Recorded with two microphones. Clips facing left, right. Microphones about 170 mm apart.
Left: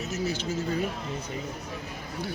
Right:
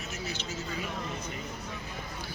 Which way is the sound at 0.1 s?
45° left (ahead or behind).